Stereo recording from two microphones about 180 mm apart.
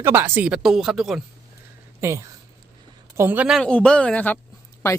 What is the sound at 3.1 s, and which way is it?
A woman's voice, 10° right (ahead or behind).